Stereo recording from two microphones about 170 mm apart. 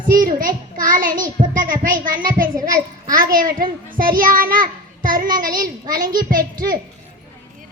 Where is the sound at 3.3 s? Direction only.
55° right (ahead or behind).